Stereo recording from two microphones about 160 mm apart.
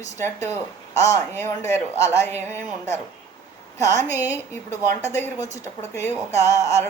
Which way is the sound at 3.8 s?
20° left (ahead or behind).